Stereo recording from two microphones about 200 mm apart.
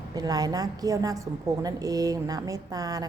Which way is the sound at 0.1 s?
20° right (ahead or behind).